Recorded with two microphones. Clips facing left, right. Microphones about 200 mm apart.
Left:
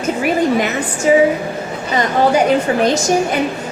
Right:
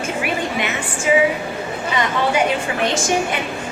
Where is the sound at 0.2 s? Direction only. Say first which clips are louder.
Left 9 dB; 40° left (ahead or behind).